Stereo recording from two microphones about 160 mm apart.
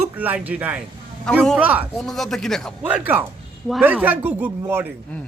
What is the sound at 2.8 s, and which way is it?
Speech, 10° right (ahead or behind).